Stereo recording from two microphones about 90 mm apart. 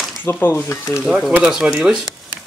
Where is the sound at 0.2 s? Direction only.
25° left (ahead or behind).